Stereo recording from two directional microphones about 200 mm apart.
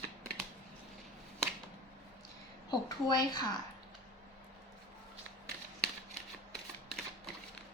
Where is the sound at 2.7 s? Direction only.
20° left (ahead or behind).